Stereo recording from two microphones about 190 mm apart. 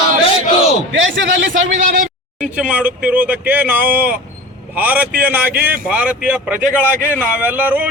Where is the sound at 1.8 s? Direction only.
45° right (ahead or behind).